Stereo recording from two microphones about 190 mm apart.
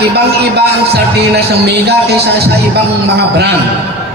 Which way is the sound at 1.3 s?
60° right (ahead or behind).